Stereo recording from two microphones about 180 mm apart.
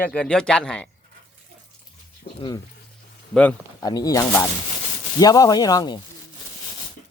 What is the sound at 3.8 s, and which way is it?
Speech, 20° left (ahead or behind).